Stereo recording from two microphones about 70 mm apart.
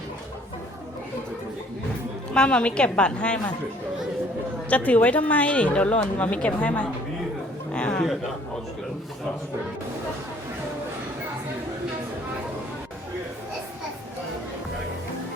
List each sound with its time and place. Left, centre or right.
2.3 s a woman's voice: centre
4.7 s a woman's voice: left
7.7 s a sound: centre